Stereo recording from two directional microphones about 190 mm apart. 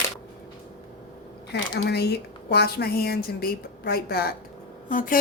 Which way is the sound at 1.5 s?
60° left (ahead or behind).